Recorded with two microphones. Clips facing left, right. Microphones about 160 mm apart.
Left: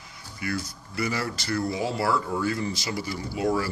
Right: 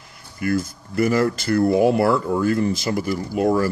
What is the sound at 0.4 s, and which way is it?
Speech, 50° right (ahead or behind).